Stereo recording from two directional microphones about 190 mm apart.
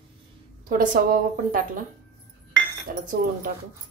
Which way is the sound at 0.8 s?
45° right (ahead or behind).